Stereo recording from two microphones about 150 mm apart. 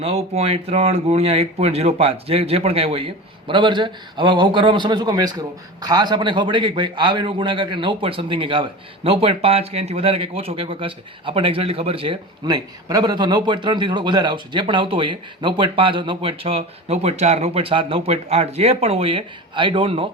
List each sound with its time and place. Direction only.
0.0 s speech: 40° right (ahead or behind)